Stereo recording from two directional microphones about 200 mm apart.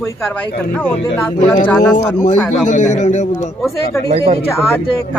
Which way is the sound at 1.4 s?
25° left (ahead or behind).